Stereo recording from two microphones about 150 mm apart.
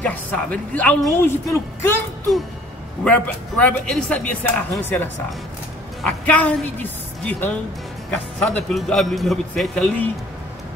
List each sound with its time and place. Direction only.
0.0 s speech: 10° left (ahead or behind)
3.0 s a man's voice: 5° left (ahead or behind)